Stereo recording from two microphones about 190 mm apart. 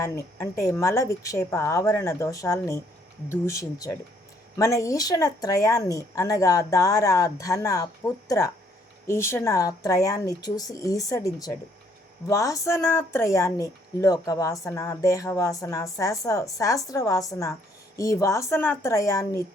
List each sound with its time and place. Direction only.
0.0 s speech: 15° left (ahead or behind)